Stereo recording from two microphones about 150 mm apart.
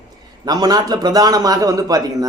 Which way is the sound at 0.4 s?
25° right (ahead or behind).